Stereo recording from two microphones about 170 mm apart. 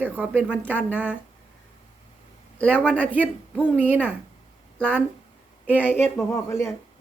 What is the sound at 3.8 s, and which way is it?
Speech, 10° right (ahead or behind).